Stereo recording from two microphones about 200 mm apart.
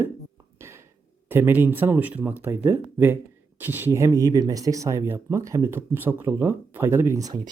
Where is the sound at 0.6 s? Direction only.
15° right (ahead or behind).